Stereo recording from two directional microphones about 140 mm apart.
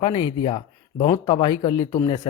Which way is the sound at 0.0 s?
30° left (ahead or behind).